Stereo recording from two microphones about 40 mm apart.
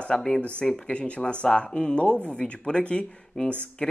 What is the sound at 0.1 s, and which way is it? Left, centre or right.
Speech, centre.